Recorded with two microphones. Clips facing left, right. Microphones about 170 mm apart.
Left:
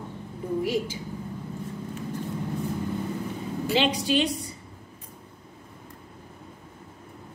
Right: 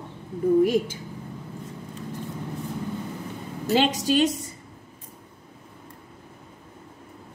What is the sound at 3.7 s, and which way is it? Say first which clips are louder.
Speech: right 3 dB; 45° right (ahead or behind).